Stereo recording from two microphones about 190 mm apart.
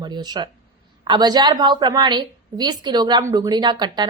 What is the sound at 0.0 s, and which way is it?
A woman's voice, 20° right (ahead or behind).